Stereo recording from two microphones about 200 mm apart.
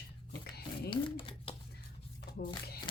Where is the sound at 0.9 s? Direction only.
25° left (ahead or behind).